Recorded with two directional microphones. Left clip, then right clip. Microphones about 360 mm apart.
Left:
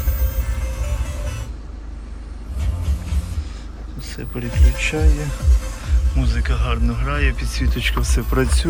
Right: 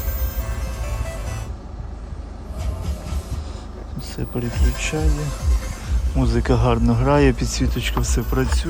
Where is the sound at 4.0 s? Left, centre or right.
Centre.